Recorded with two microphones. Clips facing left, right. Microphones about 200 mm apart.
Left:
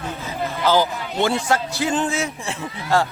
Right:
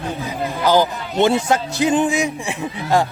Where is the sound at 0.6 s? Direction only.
15° right (ahead or behind).